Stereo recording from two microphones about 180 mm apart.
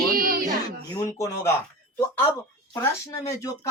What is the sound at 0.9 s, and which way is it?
Speech, 20° left (ahead or behind).